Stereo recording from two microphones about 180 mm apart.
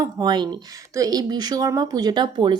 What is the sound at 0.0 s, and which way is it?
A woman's voice, 20° right (ahead or behind).